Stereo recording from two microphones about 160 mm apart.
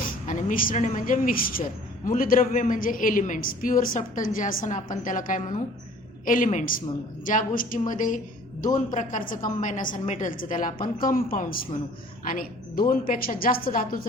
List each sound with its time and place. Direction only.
0.0 s a woman's voice: 55° left (ahead or behind)